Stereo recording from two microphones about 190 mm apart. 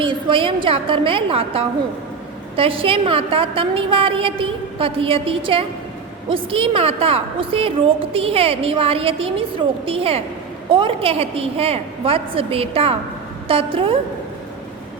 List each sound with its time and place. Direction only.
0.0 s a woman's voice: 25° right (ahead or behind)